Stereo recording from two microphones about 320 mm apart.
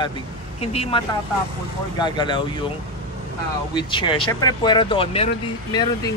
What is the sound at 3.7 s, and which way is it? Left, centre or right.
Speech, centre.